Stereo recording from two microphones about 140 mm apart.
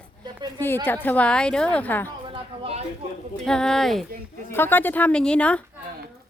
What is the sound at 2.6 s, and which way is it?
Speech, 45° right (ahead or behind).